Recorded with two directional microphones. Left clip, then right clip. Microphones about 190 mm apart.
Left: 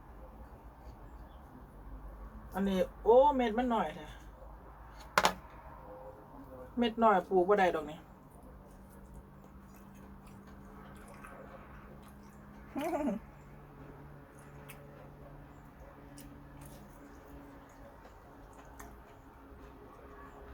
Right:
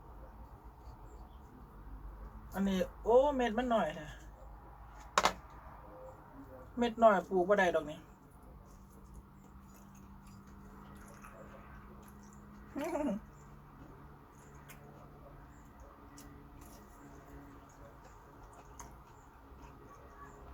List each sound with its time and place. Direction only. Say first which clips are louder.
2.5 s a man's voice: left 3 dB; 5° left (ahead or behind)
5.1 s a sound: left 2 dB; 20° left (ahead or behind)
6.7 s a man's voice: even; centre (ahead or behind)
12.7 s cat: left 2 dB; 5° left (ahead or behind)